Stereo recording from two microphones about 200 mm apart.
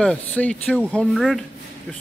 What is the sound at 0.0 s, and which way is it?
Speech, 5° left (ahead or behind).